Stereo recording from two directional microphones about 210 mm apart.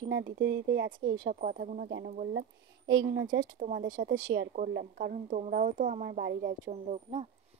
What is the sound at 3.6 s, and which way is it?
Speech, 40° right (ahead or behind).